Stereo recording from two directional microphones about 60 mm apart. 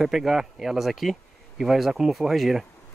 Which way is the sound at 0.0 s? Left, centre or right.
Centre.